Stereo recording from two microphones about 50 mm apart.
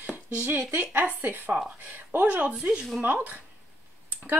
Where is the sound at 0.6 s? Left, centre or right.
Right.